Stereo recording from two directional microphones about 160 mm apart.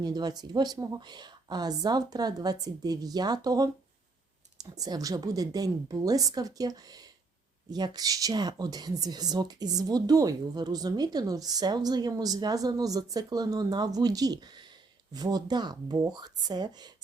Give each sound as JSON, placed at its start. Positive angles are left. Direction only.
{"t": 0.0, "sound": "speech", "side_deg": -25}